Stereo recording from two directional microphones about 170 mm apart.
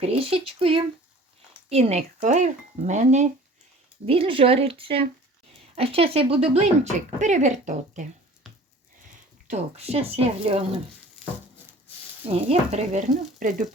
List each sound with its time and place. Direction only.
0.0 s speech: 35° right (ahead or behind)
8.4 s a sound: centre (ahead or behind)
9.5 s speech: 40° right (ahead or behind)
12.2 s speech: 35° right (ahead or behind)